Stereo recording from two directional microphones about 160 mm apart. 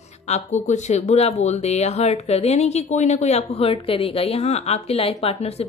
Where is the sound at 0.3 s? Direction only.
45° left (ahead or behind).